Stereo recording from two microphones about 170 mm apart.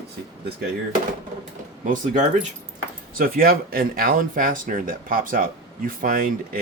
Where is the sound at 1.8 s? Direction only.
50° right (ahead or behind).